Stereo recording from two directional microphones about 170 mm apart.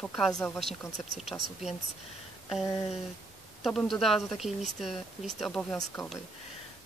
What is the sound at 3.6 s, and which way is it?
Speech, centre (ahead or behind).